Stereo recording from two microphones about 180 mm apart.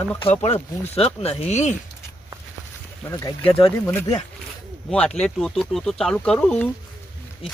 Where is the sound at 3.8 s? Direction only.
15° left (ahead or behind).